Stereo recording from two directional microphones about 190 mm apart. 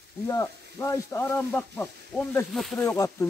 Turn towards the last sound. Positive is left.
turn(degrees=15)  # may be behind; listen again after turning